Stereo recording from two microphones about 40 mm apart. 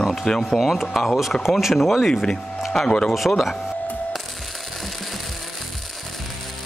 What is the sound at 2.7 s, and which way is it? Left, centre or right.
Speech, centre.